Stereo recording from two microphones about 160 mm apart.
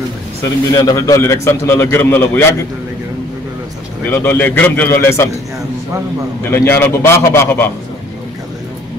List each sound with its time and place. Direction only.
0.7 s a man's voice: 20° left (ahead or behind)
4.1 s a man's voice: 15° left (ahead or behind)
6.5 s a man's voice: 15° left (ahead or behind)